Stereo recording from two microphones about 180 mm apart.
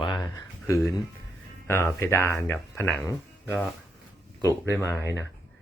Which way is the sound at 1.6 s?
15° left (ahead or behind).